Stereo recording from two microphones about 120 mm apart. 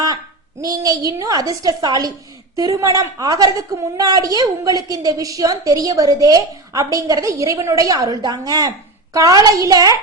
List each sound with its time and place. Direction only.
0.6 s a woman's voice: 30° right (ahead or behind)